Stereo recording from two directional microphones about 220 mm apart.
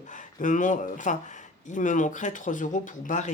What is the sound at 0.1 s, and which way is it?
Speech, 35° left (ahead or behind).